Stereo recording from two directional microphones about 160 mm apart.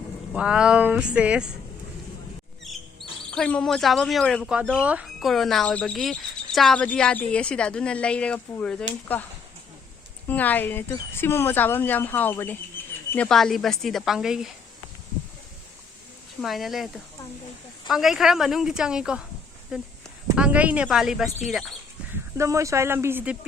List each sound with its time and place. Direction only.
0.3 s speech: 5° right (ahead or behind)
3.2 s speech: 5° left (ahead or behind)
10.2 s speech: 10° left (ahead or behind)
13.2 s speech: centre (ahead or behind)
16.4 s speech: centre (ahead or behind)
22.1 s speech: 20° right (ahead or behind)